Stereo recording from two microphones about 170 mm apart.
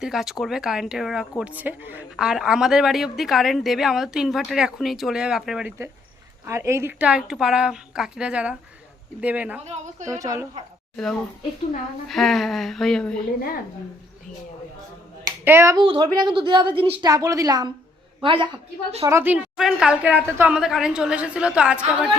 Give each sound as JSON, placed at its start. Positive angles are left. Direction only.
{"t": 0.0, "sound": "speech", "side_deg": 0}
{"t": 6.4, "sound": "a woman's voice", "side_deg": -15}
{"t": 9.6, "sound": "a woman's voice", "side_deg": -40}
{"t": 10.1, "sound": "a woman's voice", "side_deg": -20}
{"t": 10.9, "sound": "speech", "side_deg": 0}
{"t": 15.4, "sound": "a woman's voice", "side_deg": -15}
{"t": 15.8, "sound": "a woman's voice", "side_deg": -30}
{"t": 17.1, "sound": "a woman's voice", "side_deg": -20}
{"t": 19.0, "sound": "a woman's voice", "side_deg": -15}